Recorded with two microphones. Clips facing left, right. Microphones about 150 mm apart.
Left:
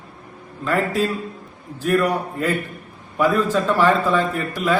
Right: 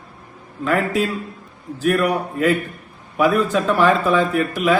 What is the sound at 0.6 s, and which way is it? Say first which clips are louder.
A man's voice: right 1 dB; 10° right (ahead or behind).